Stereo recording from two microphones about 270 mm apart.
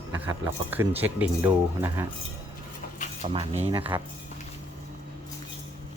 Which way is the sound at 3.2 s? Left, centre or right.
Right.